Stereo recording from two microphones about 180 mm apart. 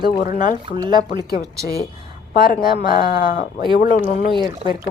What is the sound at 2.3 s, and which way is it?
Speech, 55° left (ahead or behind).